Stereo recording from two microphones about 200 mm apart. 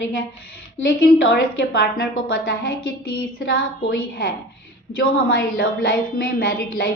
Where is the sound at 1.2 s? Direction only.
60° left (ahead or behind).